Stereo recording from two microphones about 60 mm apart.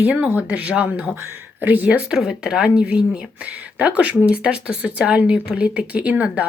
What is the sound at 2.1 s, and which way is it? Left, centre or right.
Speech, centre.